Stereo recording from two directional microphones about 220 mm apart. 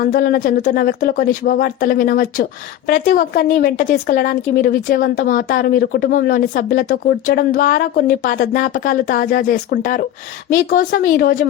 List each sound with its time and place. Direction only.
0.0 s speech: 40° left (ahead or behind)